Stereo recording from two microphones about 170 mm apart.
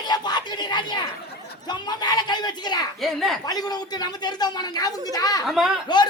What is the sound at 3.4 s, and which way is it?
A man's voice, 20° left (ahead or behind).